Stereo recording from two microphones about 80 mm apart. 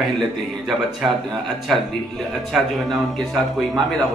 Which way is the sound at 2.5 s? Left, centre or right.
Centre.